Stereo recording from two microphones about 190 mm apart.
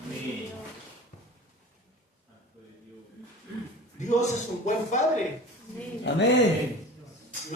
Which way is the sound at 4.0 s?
40° left (ahead or behind).